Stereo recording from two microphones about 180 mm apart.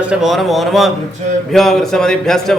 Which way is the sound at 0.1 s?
Centre (ahead or behind).